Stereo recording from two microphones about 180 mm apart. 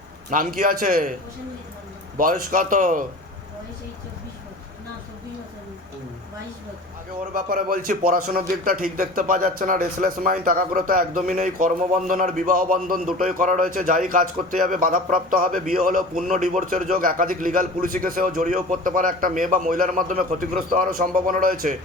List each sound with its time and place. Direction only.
0.3 s a man's voice: 50° right (ahead or behind)
2.1 s a man's voice: 50° right (ahead or behind)
7.3 s a man's voice: 50° right (ahead or behind)